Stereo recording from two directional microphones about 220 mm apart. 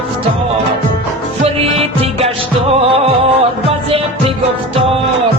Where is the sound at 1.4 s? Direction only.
25° right (ahead or behind).